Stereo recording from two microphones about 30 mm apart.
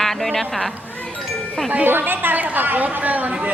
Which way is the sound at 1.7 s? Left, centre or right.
Right.